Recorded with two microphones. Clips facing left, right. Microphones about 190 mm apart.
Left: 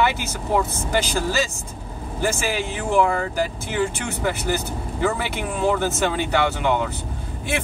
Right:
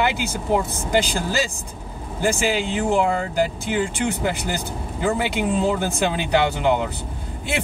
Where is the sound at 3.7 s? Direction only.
15° right (ahead or behind).